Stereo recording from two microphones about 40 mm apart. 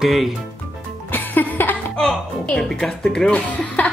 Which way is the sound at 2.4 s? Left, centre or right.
Left.